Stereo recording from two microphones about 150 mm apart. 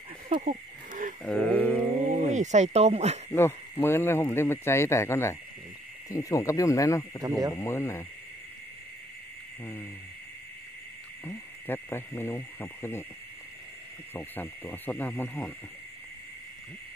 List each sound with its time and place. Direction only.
0.5 s a sound: 60° right (ahead or behind)
1.2 s a sound: 10° left (ahead or behind)
2.3 s speech: 50° right (ahead or behind)
3.3 s speech: 15° left (ahead or behind)
7.2 s speech: 25° right (ahead or behind)
7.5 s speech: 20° left (ahead or behind)
11.2 s speech: 15° left (ahead or behind)
14.1 s speech: 10° left (ahead or behind)